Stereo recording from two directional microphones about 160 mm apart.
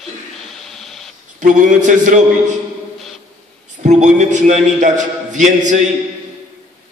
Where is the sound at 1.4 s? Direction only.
55° right (ahead or behind).